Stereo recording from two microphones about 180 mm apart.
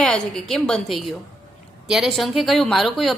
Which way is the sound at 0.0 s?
5° left (ahead or behind).